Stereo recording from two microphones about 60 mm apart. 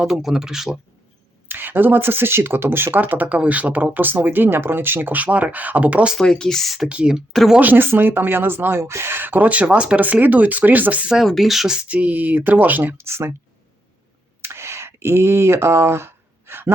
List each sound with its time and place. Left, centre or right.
0.0 s speech: centre
1.5 s speech: right
6.1 s speech: centre
6.8 s speech: centre
7.6 s speech: right
11.2 s speech: centre
11.9 s speech: right
13.1 s speech: right
14.4 s a sound: right